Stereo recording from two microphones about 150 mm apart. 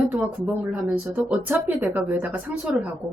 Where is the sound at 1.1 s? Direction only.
10° right (ahead or behind).